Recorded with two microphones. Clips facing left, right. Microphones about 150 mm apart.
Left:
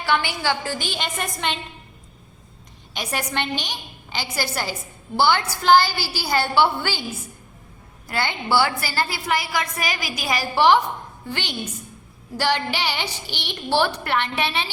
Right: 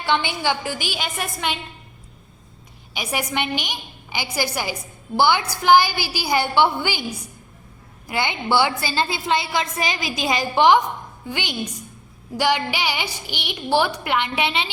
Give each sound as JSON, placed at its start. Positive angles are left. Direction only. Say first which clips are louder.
{"t": 0.0, "sound": "a woman's voice", "louder": "right 1 dB", "side_deg": -20}
{"t": 2.9, "sound": "a woman's voice", "louder": "right 1 dB", "side_deg": -10}
{"t": 8.0, "sound": "a woman's voice", "louder": "right 2 dB", "side_deg": -15}